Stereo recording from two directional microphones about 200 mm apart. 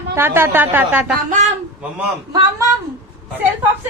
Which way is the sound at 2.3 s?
15° right (ahead or behind).